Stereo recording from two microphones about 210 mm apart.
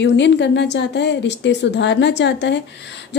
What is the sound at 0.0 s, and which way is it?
A woman's voice, 55° left (ahead or behind).